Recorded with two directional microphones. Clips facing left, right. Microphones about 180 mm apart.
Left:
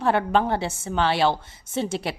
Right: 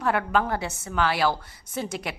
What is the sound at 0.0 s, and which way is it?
A woman's voice, 30° left (ahead or behind).